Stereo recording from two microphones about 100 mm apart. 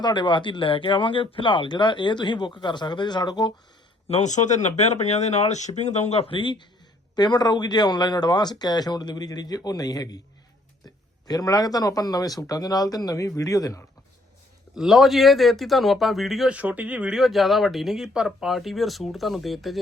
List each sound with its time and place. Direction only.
0.0 s speech: 50° left (ahead or behind)
4.9 s speech: 90° left
6.3 s speech: 55° left (ahead or behind)
7.2 s speech: 45° left (ahead or behind)
14.8 s speech: centre (ahead or behind)
16.5 s speech: 15° right (ahead or behind)